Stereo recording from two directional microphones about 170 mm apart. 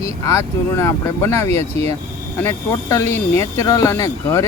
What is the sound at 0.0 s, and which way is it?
Speech, 15° left (ahead or behind).